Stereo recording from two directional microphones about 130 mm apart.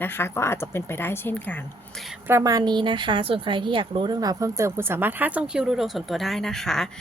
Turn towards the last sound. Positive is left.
turn(degrees=5)  # may be behind; listen again after turning